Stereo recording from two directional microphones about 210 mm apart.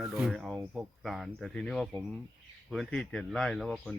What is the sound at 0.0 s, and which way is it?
Speech, centre (ahead or behind).